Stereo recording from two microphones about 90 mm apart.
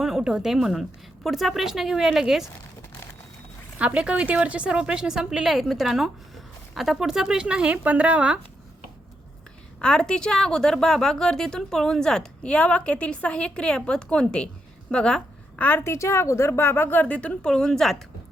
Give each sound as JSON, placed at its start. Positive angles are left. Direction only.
{"t": 0.0, "sound": "a woman's voice", "side_deg": -5}
{"t": 3.8, "sound": "a woman's voice", "side_deg": -15}
{"t": 9.8, "sound": "a woman's voice", "side_deg": 10}
{"t": 15.8, "sound": "a woman's voice", "side_deg": 30}